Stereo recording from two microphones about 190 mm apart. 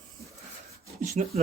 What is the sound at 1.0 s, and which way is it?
Speech, 40° right (ahead or behind).